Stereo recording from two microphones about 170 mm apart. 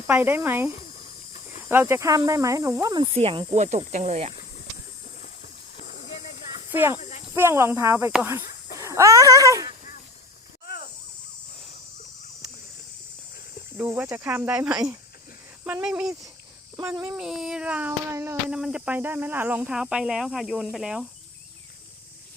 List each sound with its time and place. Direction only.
0.1 s speech: 10° right (ahead or behind)
1.7 s speech: 15° right (ahead or behind)
3.1 s speech: 35° right (ahead or behind)
5.7 s hiss: 45° left (ahead or behind)
6.7 s speech: 10° right (ahead or behind)
8.8 s a sound: 15° right (ahead or behind)
9.6 s dog: 55° left (ahead or behind)
13.7 s speech: 10° right (ahead or behind)
16.8 s speech: 15° right (ahead or behind)
17.2 s speech: 5° right (ahead or behind)